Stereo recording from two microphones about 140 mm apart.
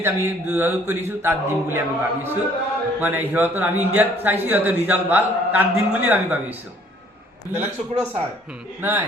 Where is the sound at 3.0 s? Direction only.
15° right (ahead or behind).